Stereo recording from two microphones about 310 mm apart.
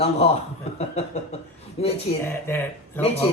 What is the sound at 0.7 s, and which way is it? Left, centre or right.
Speech, centre.